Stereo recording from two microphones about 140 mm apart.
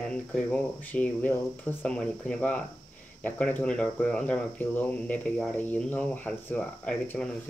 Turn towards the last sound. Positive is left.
turn(degrees=10)  # may be behind; listen again after turning